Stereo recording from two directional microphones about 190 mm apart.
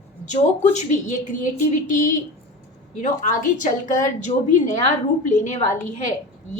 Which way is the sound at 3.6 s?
45° left (ahead or behind).